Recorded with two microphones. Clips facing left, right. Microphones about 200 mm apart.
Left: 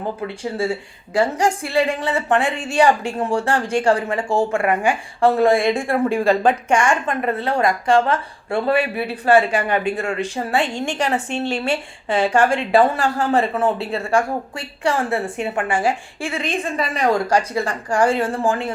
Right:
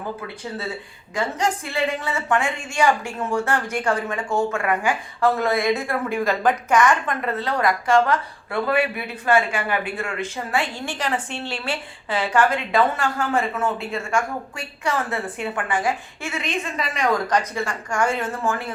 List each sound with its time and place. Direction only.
1.1 s a woman's voice: 35° left (ahead or behind)
11.3 s a woman's voice: 15° left (ahead or behind)
11.6 s a woman's voice: 25° left (ahead or behind)